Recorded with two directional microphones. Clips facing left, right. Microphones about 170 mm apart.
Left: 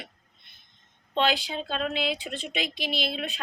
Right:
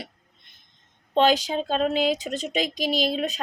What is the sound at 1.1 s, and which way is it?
Speech, 40° right (ahead or behind).